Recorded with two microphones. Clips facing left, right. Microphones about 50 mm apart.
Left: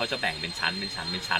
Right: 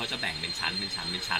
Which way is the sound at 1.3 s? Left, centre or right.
Left.